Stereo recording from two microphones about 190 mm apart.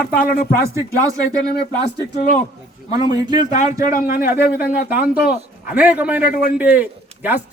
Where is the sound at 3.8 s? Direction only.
45° left (ahead or behind).